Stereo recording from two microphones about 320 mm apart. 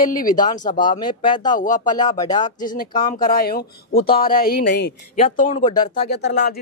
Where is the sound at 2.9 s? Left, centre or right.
Centre.